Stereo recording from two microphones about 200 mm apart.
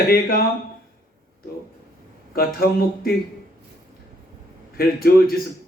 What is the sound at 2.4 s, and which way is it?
Speech, 50° left (ahead or behind).